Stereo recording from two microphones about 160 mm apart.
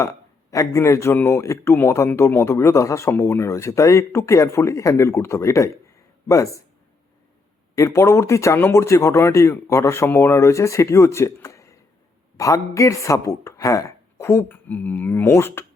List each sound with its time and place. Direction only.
0.5 s a man's voice: 20° left (ahead or behind)
7.8 s a man's voice: 20° left (ahead or behind)